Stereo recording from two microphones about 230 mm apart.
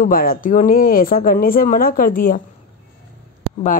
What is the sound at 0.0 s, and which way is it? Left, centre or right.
Speech, left.